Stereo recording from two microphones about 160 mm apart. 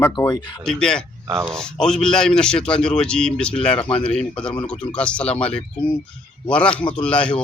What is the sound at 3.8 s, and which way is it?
Speech, 35° left (ahead or behind).